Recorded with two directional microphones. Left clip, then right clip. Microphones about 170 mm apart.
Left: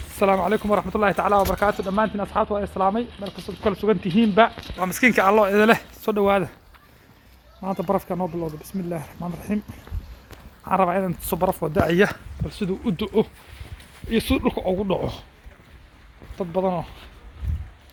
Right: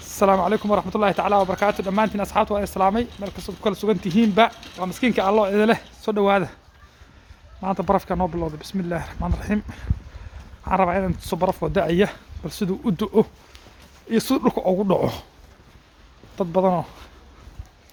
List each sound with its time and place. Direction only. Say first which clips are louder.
0.2 s speech: right 2 dB; 20° right (ahead or behind)
3.6 s speech: left 1 dB; 10° right (ahead or behind)
4.8 s speech: left 4 dB; 5° right (ahead or behind)
7.6 s speech: right 3 dB; 5° right (ahead or behind)
10.6 s speech: even; 10° right (ahead or behind); by 15.0 s 40° right (ahead or behind)
16.4 s speech: right 4 dB; 40° right (ahead or behind)